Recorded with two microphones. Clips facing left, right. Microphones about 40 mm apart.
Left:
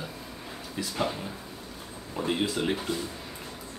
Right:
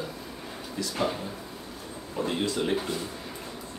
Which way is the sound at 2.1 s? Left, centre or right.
Centre.